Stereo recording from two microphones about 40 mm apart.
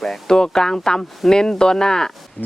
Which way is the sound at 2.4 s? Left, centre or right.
Left.